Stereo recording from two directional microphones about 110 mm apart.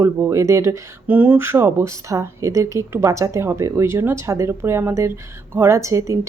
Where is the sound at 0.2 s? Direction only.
25° right (ahead or behind).